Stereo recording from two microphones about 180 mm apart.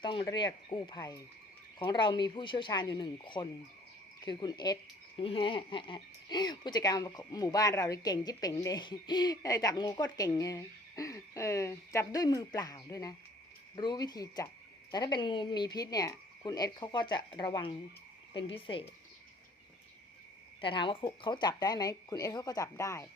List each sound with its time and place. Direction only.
0.0 s speech: 25° left (ahead or behind)
20.6 s speech: 25° left (ahead or behind)